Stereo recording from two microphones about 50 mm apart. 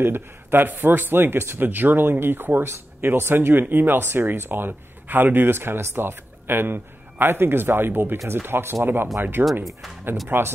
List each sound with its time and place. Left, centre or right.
0.0 s speech: right
2.6 s speech: right
3.1 s speech: right
10.2 s speech: right